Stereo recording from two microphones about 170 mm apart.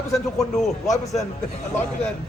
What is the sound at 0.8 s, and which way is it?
Speech, 20° left (ahead or behind).